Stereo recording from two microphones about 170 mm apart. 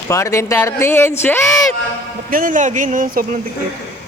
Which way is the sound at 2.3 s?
55° right (ahead or behind).